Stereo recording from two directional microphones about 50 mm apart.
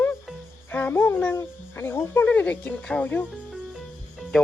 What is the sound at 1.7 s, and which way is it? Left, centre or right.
Speech, left.